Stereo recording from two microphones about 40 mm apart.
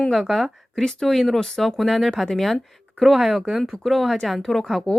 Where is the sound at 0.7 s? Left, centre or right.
Centre.